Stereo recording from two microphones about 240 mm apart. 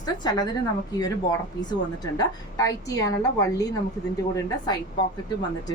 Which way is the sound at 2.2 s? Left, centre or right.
Centre.